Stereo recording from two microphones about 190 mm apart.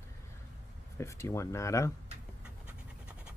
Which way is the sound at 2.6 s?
5° right (ahead or behind).